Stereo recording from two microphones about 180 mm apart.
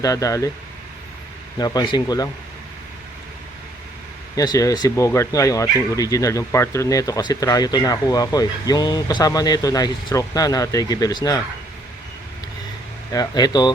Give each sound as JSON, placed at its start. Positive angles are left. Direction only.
{"t": 0.0, "sound": "speech", "side_deg": 20}
{"t": 1.5, "sound": "speech", "side_deg": 20}
{"t": 4.4, "sound": "speech", "side_deg": 20}
{"t": 13.1, "sound": "speech", "side_deg": 20}